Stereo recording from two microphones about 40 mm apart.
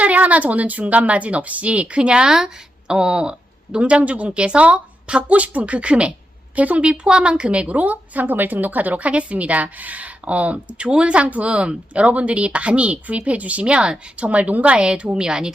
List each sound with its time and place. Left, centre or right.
0.0 s speech: right
6.9 s speech: right
14.3 s a woman's voice: right